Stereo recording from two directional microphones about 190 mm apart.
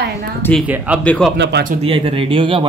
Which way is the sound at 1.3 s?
65° right (ahead or behind).